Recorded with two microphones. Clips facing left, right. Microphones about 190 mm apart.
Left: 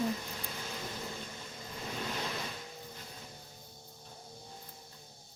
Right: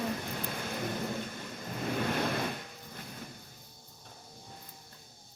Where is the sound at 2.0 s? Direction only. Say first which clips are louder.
Right 7 dB; 60° right (ahead or behind).